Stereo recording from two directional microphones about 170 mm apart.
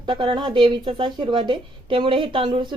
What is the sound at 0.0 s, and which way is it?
Speech, 30° right (ahead or behind).